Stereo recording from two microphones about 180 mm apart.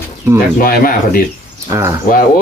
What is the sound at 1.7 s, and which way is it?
Speech, 15° right (ahead or behind).